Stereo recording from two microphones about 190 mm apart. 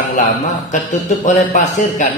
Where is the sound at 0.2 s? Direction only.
40° left (ahead or behind).